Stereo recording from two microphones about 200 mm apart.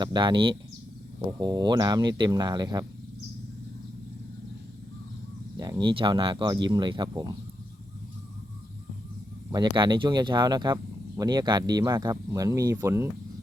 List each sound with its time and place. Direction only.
0.0 s speech: 20° right (ahead or behind)
5.5 s speech: 20° right (ahead or behind)
9.5 s speech: 20° right (ahead or behind)